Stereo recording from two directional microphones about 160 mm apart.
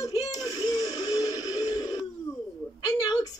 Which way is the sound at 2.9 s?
25° left (ahead or behind).